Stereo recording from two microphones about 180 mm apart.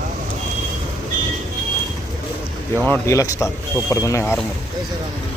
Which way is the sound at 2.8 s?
15° left (ahead or behind).